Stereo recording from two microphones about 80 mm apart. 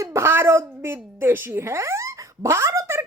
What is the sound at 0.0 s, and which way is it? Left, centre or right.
A woman's voice, right.